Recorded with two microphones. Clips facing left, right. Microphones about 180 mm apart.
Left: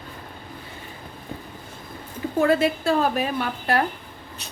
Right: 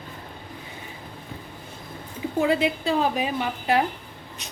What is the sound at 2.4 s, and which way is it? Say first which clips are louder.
Speech: left 3 dB; 15° right (ahead or behind).